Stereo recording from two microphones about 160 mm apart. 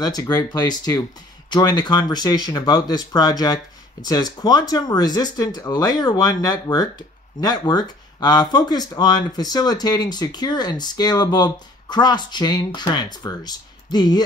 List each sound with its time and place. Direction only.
0.0 s speech: 25° left (ahead or behind)